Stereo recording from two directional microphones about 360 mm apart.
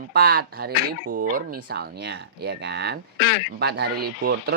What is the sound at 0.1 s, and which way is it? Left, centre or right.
Speech, right.